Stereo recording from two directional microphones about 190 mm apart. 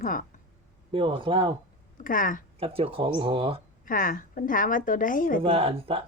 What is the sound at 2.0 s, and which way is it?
Speech, 45° left (ahead or behind).